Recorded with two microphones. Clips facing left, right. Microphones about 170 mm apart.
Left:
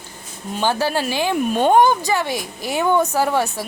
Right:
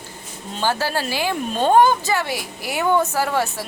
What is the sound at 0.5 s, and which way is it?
A woman's voice, 15° left (ahead or behind).